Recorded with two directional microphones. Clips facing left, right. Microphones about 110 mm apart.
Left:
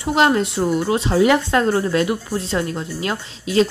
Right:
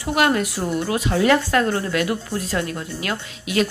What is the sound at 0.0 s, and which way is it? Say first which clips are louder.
Speech: left 3 dB; 25° left (ahead or behind).